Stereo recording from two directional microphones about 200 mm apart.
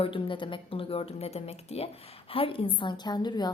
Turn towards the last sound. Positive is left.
turn(degrees=20)  # may be behind; listen again after turning